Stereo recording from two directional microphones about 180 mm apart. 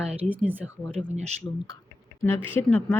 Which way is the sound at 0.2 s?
10° right (ahead or behind).